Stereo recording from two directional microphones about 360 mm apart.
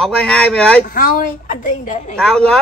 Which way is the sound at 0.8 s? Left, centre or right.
Left.